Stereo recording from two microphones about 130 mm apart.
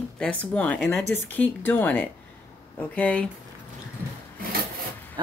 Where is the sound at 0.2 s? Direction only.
10° left (ahead or behind).